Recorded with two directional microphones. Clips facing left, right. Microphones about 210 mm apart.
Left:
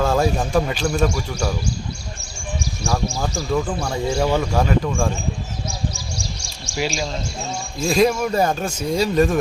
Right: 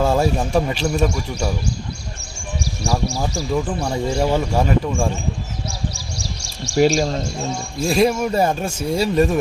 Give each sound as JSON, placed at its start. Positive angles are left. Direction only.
{"t": 0.0, "sound": "a man's voice", "side_deg": -10}
{"t": 3.2, "sound": "speech", "side_deg": -5}
{"t": 6.7, "sound": "speech", "side_deg": -40}
{"t": 7.8, "sound": "speech", "side_deg": -5}